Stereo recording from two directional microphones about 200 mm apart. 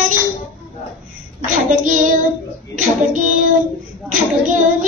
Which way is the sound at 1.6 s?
40° right (ahead or behind).